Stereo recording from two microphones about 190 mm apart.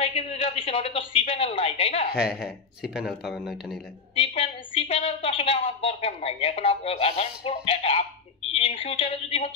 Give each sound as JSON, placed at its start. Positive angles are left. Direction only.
{"t": 0.0, "sound": "a man's voice", "side_deg": 30}
{"t": 2.1, "sound": "speech", "side_deg": -5}
{"t": 4.1, "sound": "a woman's voice", "side_deg": 30}